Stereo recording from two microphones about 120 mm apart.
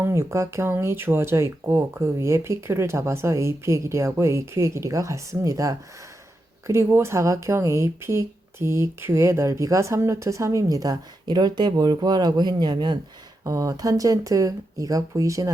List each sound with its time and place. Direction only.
0.0 s speech: 20° right (ahead or behind); by 13.0 s 40° right (ahead or behind)
13.4 s speech: 30° right (ahead or behind)